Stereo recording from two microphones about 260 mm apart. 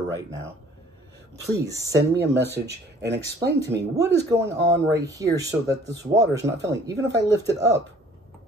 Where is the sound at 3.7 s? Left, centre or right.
Centre.